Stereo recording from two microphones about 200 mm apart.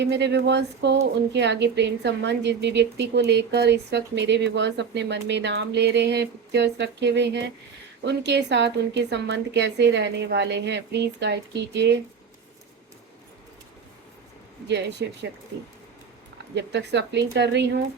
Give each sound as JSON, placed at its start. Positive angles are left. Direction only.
{"t": 0.0, "sound": "a woman's voice", "side_deg": -60}
{"t": 14.7, "sound": "a woman's voice", "side_deg": -60}
{"t": 16.6, "sound": "a woman's voice", "side_deg": -60}